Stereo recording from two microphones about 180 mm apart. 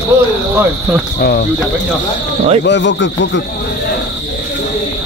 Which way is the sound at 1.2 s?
65° left (ahead or behind).